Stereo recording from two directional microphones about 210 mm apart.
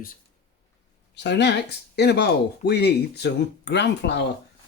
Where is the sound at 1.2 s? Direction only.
55° left (ahead or behind).